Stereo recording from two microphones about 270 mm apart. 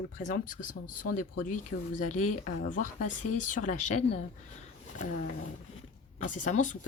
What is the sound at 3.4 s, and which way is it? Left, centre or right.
Speech, left.